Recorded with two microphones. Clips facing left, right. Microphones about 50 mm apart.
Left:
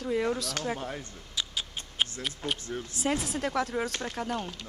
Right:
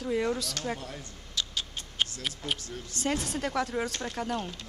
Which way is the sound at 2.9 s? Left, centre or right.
Centre.